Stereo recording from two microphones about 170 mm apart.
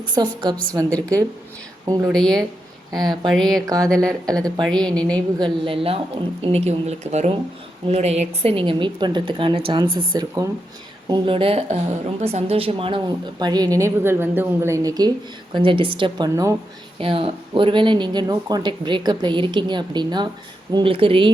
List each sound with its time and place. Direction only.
0.0 s speech: 25° right (ahead or behind)
1.8 s speech: 20° right (ahead or behind)
2.1 s speech: 5° left (ahead or behind)
2.9 s speech: 25° right (ahead or behind)
3.2 s speech: 5° left (ahead or behind)
5.4 s a woman's voice: 30° right (ahead or behind)
10.2 s speech: 20° right (ahead or behind)
11.1 s a woman's voice: 30° right (ahead or behind)
17.0 s a woman's voice: 30° right (ahead or behind)